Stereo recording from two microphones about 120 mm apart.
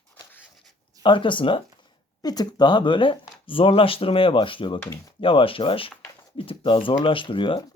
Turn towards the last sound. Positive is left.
turn(degrees=45)  # may be behind; listen again after turning